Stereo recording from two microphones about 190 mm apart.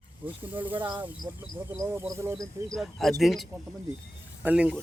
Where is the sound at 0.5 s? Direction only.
10° right (ahead or behind).